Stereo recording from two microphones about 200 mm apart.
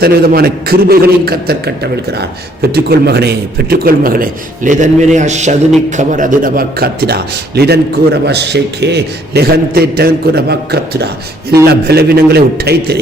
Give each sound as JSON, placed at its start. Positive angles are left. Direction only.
{"t": 0.0, "sound": "a man's voice", "side_deg": -50}